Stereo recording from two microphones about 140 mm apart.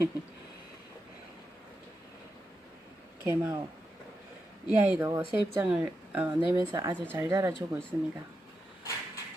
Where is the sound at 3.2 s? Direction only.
15° right (ahead or behind).